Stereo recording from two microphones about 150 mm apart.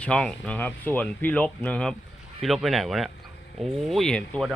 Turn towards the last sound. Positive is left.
turn(degrees=5)  # may be behind; listen again after turning